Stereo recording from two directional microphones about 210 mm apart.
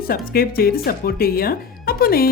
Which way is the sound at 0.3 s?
45° left (ahead or behind).